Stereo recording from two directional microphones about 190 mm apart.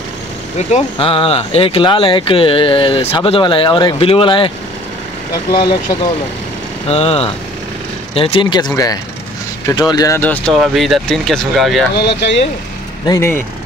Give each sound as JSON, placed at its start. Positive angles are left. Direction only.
{"t": 0.6, "sound": "speech", "side_deg": 35}
{"t": 5.5, "sound": "speech", "side_deg": 25}
{"t": 6.9, "sound": "speech", "side_deg": 30}
{"t": 11.9, "sound": "speech", "side_deg": 65}
{"t": 13.0, "sound": "speech", "side_deg": 15}